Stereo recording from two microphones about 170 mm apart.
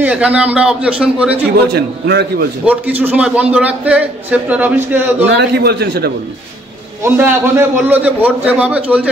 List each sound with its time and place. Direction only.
0.0 s a man's voice: 10° right (ahead or behind)
1.7 s a man's voice: 75° right (ahead or behind)
2.6 s a man's voice: 10° right (ahead or behind)
5.4 s a man's voice: 75° right (ahead or behind)
7.0 s a man's voice: 15° right (ahead or behind)